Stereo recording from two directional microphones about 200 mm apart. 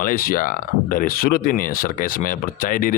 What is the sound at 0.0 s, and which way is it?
Speech, 45° left (ahead or behind).